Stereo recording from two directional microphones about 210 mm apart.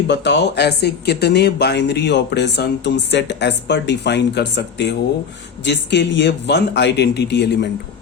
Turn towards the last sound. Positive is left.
turn(degrees=50)  # may be behind; listen again after turning